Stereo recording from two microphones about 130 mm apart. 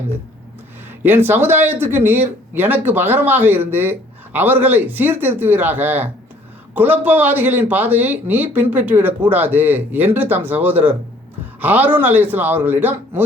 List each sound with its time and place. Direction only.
1.0 s speech: 15° right (ahead or behind)